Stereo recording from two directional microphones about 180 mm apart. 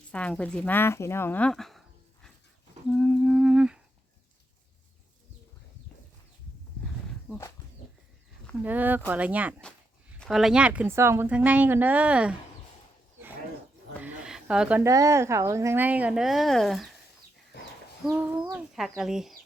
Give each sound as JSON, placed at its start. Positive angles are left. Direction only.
{"t": 0.1, "sound": "speech", "side_deg": 5}
{"t": 2.9, "sound": "humming", "side_deg": 5}
{"t": 8.6, "sound": "a woman's voice", "side_deg": -10}
{"t": 14.0, "sound": "a sound", "side_deg": -5}
{"t": 14.8, "sound": "a woman's voice", "side_deg": -15}
{"t": 17.5, "sound": "chicken", "side_deg": 65}
{"t": 18.0, "sound": "a woman's voice", "side_deg": -10}